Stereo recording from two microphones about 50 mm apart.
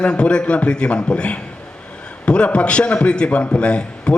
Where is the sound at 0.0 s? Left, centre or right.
Left.